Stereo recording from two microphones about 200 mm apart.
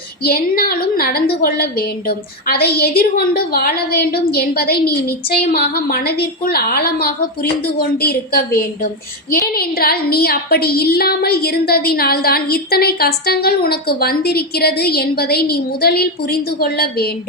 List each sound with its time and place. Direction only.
0.2 s a woman's voice: 50° left (ahead or behind)